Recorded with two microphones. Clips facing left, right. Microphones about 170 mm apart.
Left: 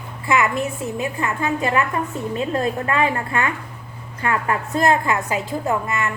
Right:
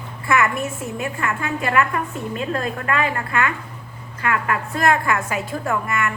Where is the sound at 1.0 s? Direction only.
20° left (ahead or behind).